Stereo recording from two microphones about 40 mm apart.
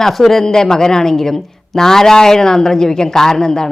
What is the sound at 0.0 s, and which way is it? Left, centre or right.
Speech, centre.